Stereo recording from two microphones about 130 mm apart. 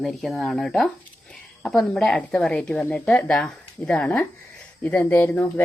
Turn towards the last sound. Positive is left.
turn(degrees=20)  # may be behind; listen again after turning